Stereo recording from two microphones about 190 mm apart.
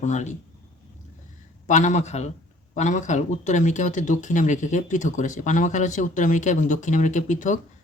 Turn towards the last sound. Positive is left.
turn(degrees=40)  # may be behind; listen again after turning